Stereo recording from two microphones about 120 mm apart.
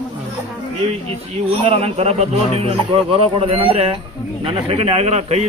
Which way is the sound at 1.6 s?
50° right (ahead or behind).